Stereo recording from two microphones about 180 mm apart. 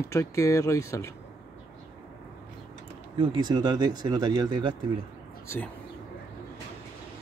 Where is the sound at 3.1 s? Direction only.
25° right (ahead or behind).